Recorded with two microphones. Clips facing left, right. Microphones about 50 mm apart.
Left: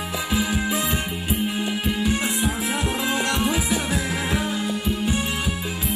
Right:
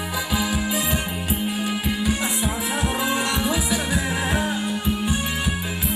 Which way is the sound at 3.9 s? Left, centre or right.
Right.